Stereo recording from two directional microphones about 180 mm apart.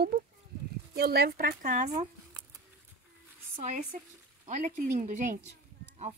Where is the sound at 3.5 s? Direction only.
45° right (ahead or behind).